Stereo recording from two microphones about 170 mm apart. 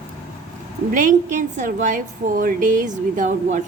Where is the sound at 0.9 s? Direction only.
50° right (ahead or behind).